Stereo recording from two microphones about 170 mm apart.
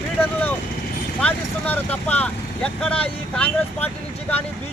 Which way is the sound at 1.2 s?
10° left (ahead or behind).